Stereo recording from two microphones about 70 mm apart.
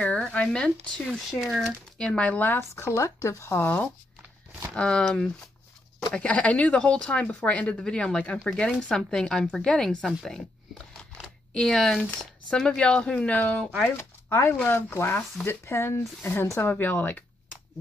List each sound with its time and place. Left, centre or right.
0.0 s speech: centre
1.0 s speech: centre
2.0 s speech: centre
2.7 s speech: left
3.6 s speech: left
4.7 s speech: centre
11.5 s speech: centre; by 13.7 s left
13.9 s speech: left